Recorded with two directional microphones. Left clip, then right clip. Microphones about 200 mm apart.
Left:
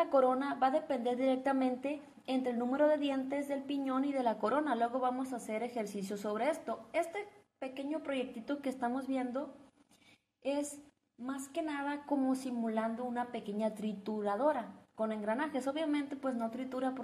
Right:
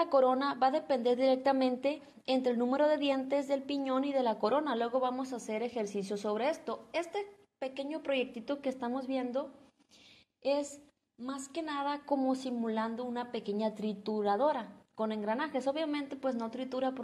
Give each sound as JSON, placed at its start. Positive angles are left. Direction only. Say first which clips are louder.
{"t": 0.0, "sound": "a woman's voice", "louder": "right 2 dB", "side_deg": -35}
{"t": 8.5, "sound": "a woman's voice", "louder": "right 1 dB", "side_deg": -20}
{"t": 11.2, "sound": "a woman's voice", "louder": "even", "side_deg": -40}
{"t": 13.7, "sound": "a woman's voice", "louder": "right 4 dB", "side_deg": -20}
{"t": 16.1, "sound": "a woman's voice", "louder": "right 2 dB", "side_deg": -35}